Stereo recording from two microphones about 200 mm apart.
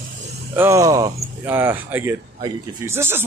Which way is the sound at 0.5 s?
15° right (ahead or behind).